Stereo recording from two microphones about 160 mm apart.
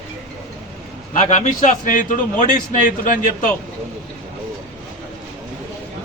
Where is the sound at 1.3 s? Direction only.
50° left (ahead or behind).